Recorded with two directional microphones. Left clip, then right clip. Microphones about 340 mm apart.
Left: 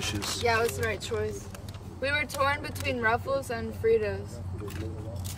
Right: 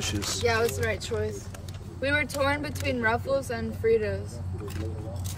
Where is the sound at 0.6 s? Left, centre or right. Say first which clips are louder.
Right 1 dB; centre.